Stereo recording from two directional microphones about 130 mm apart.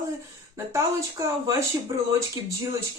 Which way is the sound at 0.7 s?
25° right (ahead or behind).